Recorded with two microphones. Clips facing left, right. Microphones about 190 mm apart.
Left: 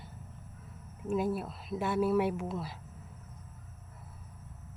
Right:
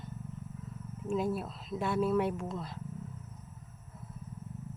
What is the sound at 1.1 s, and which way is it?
Speech, 5° left (ahead or behind).